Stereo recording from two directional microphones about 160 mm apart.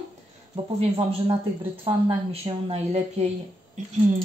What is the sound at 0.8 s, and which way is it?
Speech, 35° right (ahead or behind).